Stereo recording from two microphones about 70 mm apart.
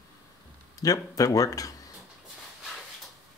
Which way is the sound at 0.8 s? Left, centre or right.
Left.